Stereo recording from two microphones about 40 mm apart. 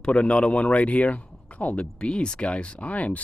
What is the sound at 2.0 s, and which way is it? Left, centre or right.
Speech, left.